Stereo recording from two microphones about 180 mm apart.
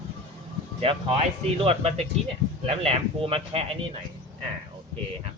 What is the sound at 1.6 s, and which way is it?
A man's voice, 35° right (ahead or behind).